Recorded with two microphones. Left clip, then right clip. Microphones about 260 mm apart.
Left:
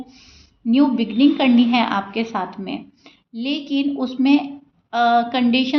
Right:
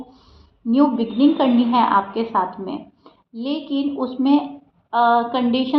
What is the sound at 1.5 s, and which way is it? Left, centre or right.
A woman's voice, left.